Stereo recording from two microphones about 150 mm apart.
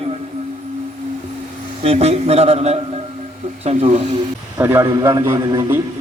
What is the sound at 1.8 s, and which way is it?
A man's voice, 45° right (ahead or behind).